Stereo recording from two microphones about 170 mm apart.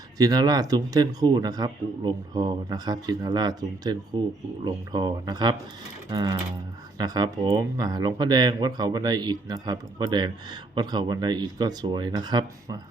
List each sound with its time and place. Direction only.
0.2 s speech: 25° right (ahead or behind)